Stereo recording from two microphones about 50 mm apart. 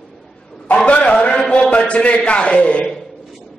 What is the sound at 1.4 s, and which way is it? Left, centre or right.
A man's voice, left.